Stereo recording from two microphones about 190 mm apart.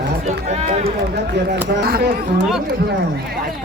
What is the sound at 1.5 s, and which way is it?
Speech, 55° right (ahead or behind).